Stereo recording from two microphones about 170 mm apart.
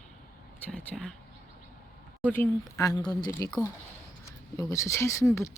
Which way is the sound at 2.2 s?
15° left (ahead or behind).